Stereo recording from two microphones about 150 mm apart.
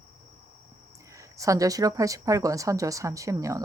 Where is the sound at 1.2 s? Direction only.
20° right (ahead or behind).